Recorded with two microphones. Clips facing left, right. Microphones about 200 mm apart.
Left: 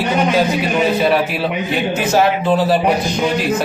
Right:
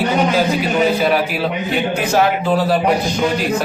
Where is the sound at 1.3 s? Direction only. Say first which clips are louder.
Even; centre (ahead or behind).